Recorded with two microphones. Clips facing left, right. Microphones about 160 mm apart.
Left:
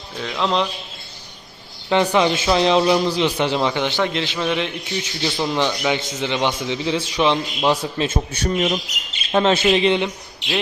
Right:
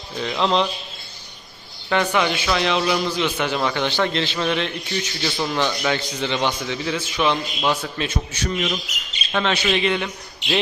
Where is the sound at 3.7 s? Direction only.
15° left (ahead or behind).